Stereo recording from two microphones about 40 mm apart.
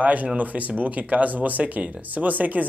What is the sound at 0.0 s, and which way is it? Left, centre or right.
Speech, right.